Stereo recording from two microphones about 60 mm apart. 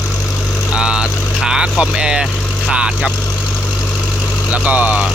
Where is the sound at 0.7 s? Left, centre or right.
Centre.